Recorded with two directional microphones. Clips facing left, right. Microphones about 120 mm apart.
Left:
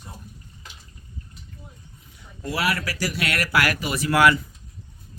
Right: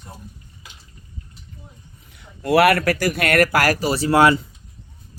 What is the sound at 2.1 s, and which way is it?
Speech, 65° right (ahead or behind).